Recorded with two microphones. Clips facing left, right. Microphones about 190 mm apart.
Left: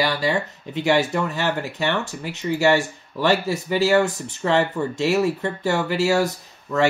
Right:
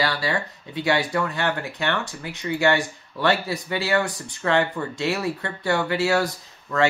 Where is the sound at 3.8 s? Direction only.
20° left (ahead or behind).